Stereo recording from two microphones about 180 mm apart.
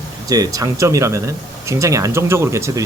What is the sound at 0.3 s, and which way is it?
Speech, 20° right (ahead or behind).